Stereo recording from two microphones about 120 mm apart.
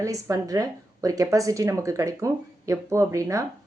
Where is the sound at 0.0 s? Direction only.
30° right (ahead or behind).